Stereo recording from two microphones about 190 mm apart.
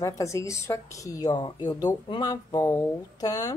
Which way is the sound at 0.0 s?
15° left (ahead or behind).